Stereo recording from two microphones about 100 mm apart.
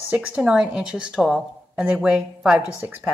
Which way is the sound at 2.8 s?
20° right (ahead or behind).